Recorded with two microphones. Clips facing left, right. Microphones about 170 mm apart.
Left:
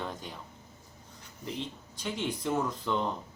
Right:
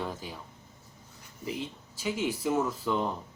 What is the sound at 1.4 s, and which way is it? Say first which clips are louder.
Speech: right 2 dB; 5° right (ahead or behind).